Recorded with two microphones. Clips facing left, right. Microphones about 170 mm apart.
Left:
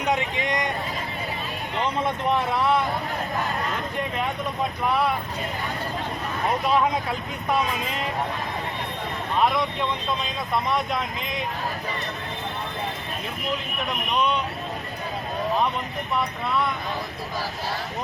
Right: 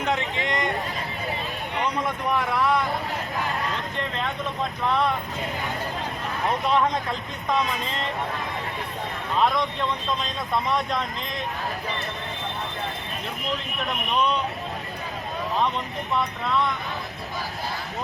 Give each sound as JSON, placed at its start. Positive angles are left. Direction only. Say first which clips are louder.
{"t": 0.0, "sound": "a sound", "louder": "left 1 dB", "side_deg": 15}
{"t": 1.8, "sound": "speech", "louder": "left 2 dB", "side_deg": 20}
{"t": 4.8, "sound": "speech", "louder": "even", "side_deg": 10}
{"t": 6.7, "sound": "speech", "louder": "even", "side_deg": 5}
{"t": 9.4, "sound": "speech", "louder": "even", "side_deg": 5}